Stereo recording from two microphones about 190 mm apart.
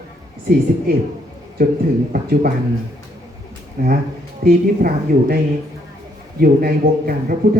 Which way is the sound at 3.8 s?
50° right (ahead or behind).